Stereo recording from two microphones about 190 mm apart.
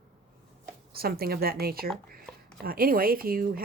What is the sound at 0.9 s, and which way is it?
A woman's voice, 55° right (ahead or behind).